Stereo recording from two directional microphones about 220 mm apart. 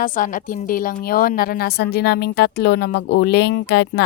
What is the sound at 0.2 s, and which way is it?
A woman's voice, 40° left (ahead or behind).